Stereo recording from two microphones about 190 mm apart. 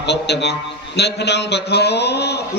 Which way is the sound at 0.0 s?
65° left (ahead or behind).